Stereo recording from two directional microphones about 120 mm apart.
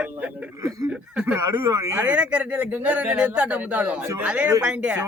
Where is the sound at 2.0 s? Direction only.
10° right (ahead or behind).